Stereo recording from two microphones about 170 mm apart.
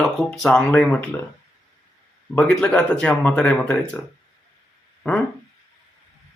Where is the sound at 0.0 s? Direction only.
5° left (ahead or behind).